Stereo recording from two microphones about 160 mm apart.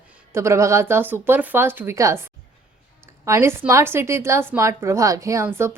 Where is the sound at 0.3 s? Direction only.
15° right (ahead or behind).